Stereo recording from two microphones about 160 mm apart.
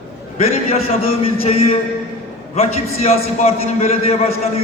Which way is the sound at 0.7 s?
35° left (ahead or behind).